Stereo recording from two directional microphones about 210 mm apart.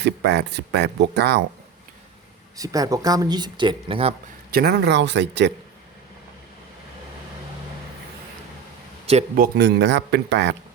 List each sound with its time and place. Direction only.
0.0 s speech: 55° right (ahead or behind)
2.6 s speech: 15° right (ahead or behind)
4.5 s speech: 50° right (ahead or behind)
9.3 s speech: 50° right (ahead or behind)